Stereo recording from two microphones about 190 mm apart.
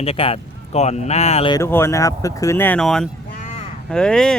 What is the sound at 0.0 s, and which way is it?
Speech, 30° left (ahead or behind).